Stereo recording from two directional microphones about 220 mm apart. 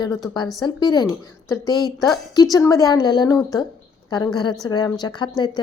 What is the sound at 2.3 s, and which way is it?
A woman's voice, 15° left (ahead or behind).